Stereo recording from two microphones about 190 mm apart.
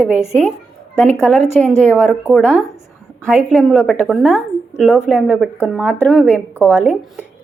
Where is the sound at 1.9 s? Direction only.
5° left (ahead or behind).